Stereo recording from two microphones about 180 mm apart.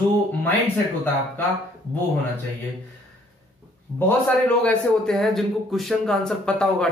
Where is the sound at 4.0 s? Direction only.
10° left (ahead or behind).